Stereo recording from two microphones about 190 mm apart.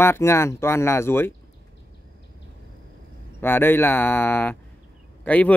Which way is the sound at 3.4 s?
10° left (ahead or behind).